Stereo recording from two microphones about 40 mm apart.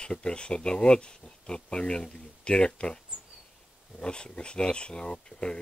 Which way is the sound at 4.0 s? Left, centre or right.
Left.